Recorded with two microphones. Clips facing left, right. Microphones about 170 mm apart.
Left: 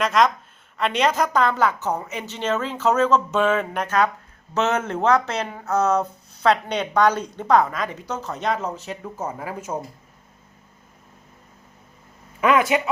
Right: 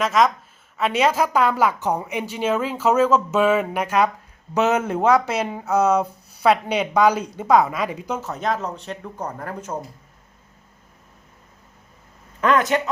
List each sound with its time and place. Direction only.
0.0 s a woman's voice: centre (ahead or behind)
12.4 s speech: 10° left (ahead or behind)